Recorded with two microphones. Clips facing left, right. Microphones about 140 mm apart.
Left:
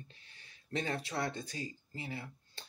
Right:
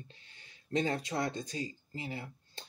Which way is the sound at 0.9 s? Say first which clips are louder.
Right 3 dB; 20° right (ahead or behind).